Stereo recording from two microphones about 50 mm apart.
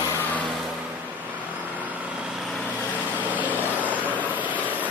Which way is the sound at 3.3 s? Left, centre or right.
Right.